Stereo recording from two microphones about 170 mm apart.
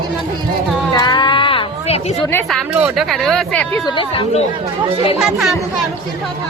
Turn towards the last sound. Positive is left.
turn(degrees=-5)  # may be behind; listen again after turning